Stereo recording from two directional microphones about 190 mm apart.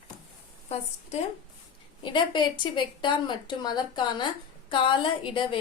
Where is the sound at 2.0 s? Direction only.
25° left (ahead or behind).